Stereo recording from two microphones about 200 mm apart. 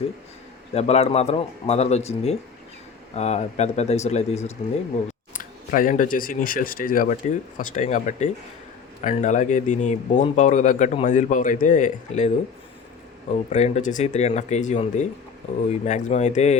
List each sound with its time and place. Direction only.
0.7 s speech: 30° left (ahead or behind)
13.5 s speech: 35° left (ahead or behind)